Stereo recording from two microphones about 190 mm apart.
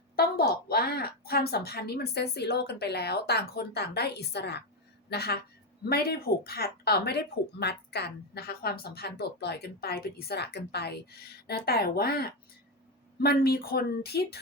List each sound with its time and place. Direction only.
0.2 s speech: 55° left (ahead or behind)